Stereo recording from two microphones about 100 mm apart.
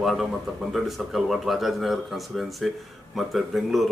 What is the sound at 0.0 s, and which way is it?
Speech, centre (ahead or behind).